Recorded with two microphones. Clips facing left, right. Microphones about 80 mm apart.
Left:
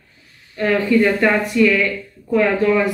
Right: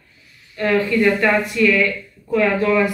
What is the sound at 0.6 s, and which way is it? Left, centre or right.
Speech, centre.